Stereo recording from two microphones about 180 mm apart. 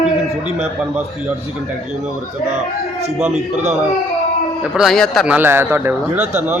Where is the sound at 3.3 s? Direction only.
40° right (ahead or behind).